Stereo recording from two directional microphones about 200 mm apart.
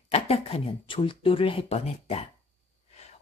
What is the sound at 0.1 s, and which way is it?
A woman's voice, 30° left (ahead or behind).